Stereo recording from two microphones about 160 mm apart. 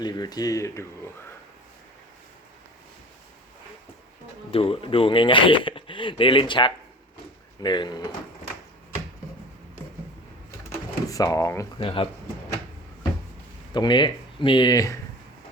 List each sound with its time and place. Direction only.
0.0 s speech: 25° left (ahead or behind)
4.5 s speech: 35° left (ahead or behind)
11.0 s speech: 20° left (ahead or behind)
11.8 s speech: 35° left (ahead or behind)
13.7 s speech: 30° left (ahead or behind)